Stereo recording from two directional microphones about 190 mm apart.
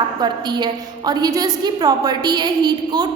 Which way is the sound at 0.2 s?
20° right (ahead or behind).